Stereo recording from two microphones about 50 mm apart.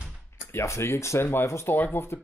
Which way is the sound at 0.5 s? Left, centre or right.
Left.